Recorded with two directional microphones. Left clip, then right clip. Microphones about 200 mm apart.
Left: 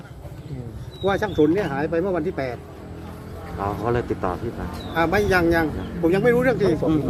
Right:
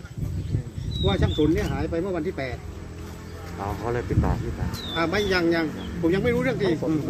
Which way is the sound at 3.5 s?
50° left (ahead or behind).